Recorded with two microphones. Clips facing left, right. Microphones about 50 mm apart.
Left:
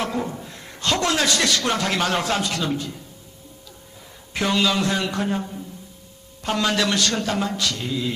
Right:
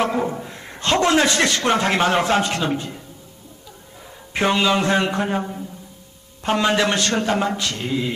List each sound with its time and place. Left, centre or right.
0.0 s a man's voice: right
4.4 s a man's voice: right